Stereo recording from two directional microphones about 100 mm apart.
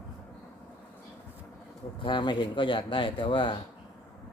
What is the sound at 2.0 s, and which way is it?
Speech, 55° left (ahead or behind).